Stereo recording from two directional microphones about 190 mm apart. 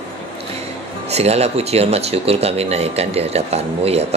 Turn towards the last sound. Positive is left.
turn(degrees=-35)  # may be behind; listen again after turning